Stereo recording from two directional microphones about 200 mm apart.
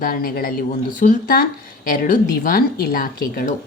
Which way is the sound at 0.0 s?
45° left (ahead or behind).